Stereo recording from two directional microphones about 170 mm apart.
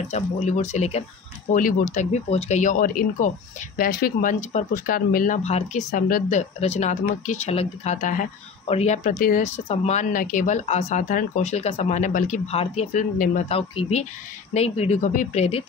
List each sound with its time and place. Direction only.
0.1 s speech: 40° left (ahead or behind)
1.5 s speech: 55° left (ahead or behind)
6.6 s speech: 40° left (ahead or behind)